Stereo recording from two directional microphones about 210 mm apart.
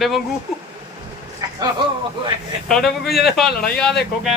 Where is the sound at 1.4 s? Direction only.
15° right (ahead or behind).